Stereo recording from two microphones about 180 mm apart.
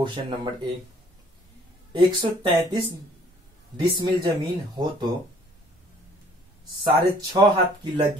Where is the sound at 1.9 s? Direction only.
25° right (ahead or behind).